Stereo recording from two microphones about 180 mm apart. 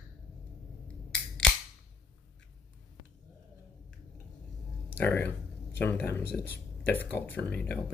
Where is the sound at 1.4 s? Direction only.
5° left (ahead or behind).